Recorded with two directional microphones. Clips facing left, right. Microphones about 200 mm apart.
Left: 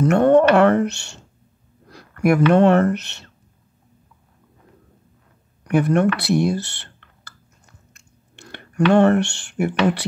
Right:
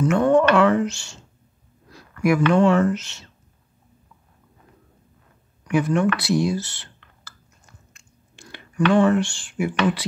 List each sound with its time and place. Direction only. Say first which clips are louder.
0.0 s speech: left 3 dB; 55° left (ahead or behind)
2.5 s speech: left 3 dB; 55° left (ahead or behind)
5.6 s speech: left 3 dB; 60° left (ahead or behind)
8.4 s a sound: left 3 dB; 60° left (ahead or behind)
8.9 s speech: left 3 dB; 60° left (ahead or behind)